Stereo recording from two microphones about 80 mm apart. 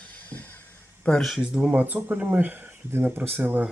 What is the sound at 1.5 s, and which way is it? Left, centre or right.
Speech, centre.